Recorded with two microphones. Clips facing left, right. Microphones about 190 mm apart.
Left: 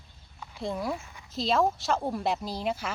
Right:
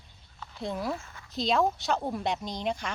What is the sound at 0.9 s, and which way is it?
Speech, 15° left (ahead or behind).